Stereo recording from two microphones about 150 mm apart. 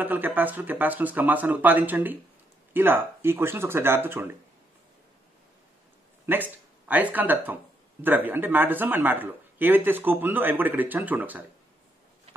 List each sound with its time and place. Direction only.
0.0 s speech: 10° right (ahead or behind)
6.2 s speech: 10° right (ahead or behind)